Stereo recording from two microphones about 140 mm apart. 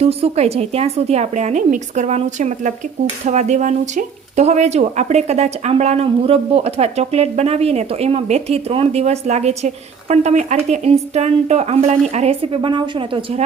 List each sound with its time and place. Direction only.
0.0 s a woman's voice: 45° right (ahead or behind)